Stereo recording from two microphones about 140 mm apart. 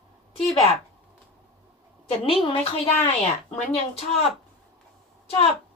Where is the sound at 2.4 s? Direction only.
45° left (ahead or behind).